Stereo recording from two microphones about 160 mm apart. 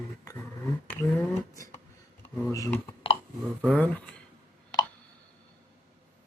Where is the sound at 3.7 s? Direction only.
10° left (ahead or behind).